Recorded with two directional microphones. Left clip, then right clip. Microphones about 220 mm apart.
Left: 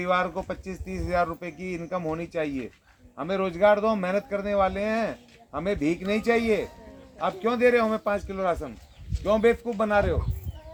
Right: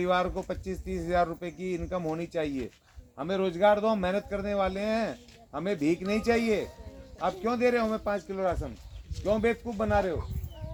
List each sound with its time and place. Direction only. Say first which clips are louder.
0.0 s a man's voice: left 2 dB; 5° left (ahead or behind); by 10.2 s 40° left (ahead or behind)